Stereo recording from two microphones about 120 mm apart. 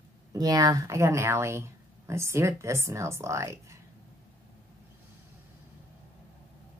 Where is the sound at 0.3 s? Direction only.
30° right (ahead or behind).